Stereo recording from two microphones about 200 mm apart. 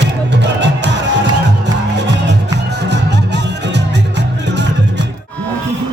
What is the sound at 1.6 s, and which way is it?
Music, 60° right (ahead or behind).